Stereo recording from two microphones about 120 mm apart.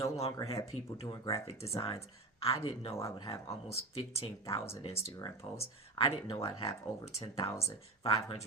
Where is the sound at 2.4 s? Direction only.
50° left (ahead or behind).